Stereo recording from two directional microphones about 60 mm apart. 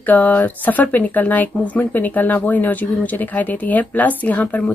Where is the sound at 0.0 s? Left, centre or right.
Left.